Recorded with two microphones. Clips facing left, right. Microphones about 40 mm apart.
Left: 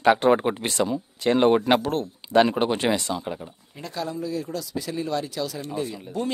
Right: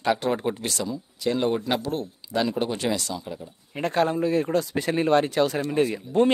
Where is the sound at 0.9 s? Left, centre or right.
Left.